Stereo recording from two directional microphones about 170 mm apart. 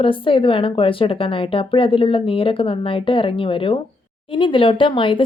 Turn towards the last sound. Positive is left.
turn(degrees=30)  # may be behind; listen again after turning